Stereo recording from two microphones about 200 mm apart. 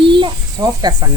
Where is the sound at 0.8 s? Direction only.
20° right (ahead or behind).